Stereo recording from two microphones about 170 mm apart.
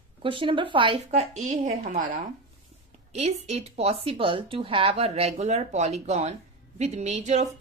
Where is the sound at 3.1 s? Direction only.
40° right (ahead or behind).